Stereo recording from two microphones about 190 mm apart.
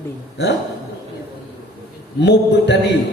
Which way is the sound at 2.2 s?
65° left (ahead or behind).